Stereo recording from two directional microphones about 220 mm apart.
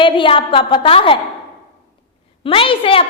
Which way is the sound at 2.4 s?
25° left (ahead or behind).